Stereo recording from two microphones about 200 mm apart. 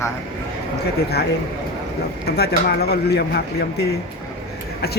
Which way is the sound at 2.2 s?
55° left (ahead or behind).